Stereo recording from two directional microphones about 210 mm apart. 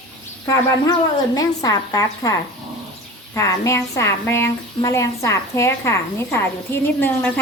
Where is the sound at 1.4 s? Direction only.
15° left (ahead or behind).